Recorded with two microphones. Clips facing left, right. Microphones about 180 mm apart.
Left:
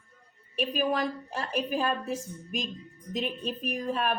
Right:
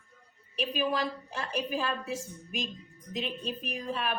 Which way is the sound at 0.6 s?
40° left (ahead or behind).